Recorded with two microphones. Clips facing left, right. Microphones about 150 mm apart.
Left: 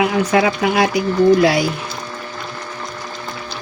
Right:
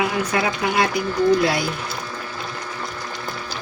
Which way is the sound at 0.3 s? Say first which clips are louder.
Left 6 dB; 90° left.